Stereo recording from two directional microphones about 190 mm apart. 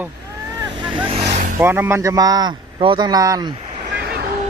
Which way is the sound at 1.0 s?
35° right (ahead or behind).